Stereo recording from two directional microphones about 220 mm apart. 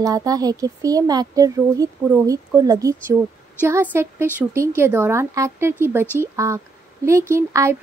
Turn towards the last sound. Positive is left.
turn(degrees=-15)  # may be behind; listen again after turning